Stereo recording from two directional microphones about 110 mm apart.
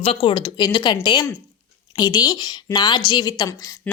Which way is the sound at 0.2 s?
50° left (ahead or behind).